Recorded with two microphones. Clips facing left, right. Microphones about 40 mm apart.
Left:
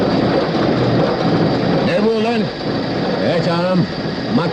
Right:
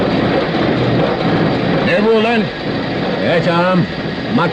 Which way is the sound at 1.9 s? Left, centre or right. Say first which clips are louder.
Right 3 dB; right.